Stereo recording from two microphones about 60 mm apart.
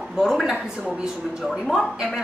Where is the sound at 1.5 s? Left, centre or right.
Centre.